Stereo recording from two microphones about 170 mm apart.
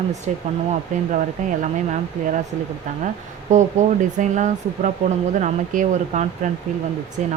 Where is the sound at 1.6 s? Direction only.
45° right (ahead or behind).